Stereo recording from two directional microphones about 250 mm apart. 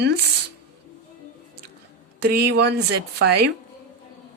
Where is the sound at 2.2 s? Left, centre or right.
Right.